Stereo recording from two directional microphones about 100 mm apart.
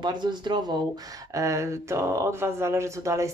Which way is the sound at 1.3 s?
30° right (ahead or behind).